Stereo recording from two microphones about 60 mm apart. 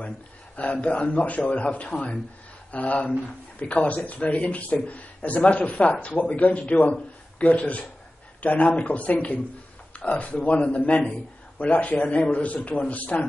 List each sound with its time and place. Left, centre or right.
0.6 s speech: left